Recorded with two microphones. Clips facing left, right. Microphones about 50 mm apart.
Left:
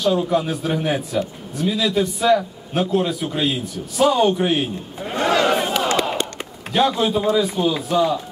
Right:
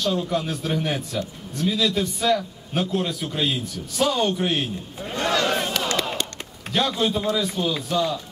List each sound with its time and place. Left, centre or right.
0.0 s a man's voice: centre
5.0 s a sound: left
6.7 s a man's voice: centre